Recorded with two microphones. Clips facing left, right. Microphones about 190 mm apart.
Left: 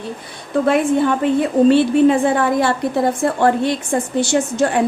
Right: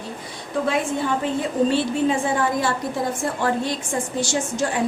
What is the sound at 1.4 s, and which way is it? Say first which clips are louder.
A woman's voice: left 9 dB; 60° left (ahead or behind).